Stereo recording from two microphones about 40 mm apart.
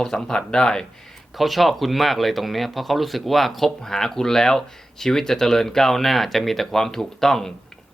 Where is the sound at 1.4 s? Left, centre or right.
Centre.